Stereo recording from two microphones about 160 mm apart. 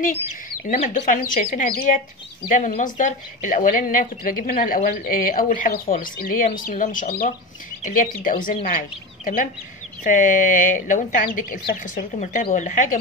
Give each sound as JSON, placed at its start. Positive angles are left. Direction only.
{"t": 0.3, "sound": "a woman's voice", "side_deg": 50}